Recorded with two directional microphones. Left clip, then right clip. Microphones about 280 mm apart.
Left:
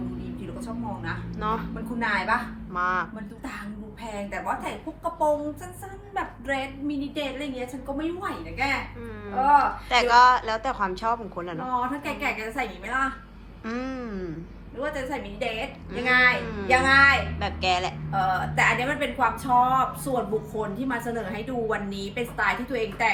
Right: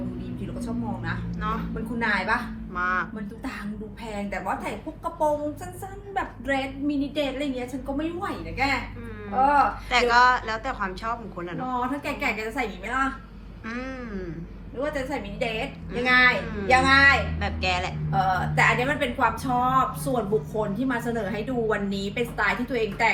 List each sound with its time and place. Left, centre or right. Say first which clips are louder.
2.0 s a woman's voice: even; centre
2.7 s a woman's voice: even; centre
6.1 s a woman's voice: right 2 dB; centre
11.7 s a woman's voice: left 1 dB; centre
13.7 s a woman's voice: left 2 dB; centre
14.9 s a woman's voice: right 2 dB; centre